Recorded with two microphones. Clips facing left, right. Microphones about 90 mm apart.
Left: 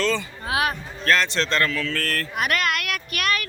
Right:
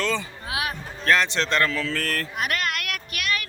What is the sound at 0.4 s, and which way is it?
Music, 50° left (ahead or behind).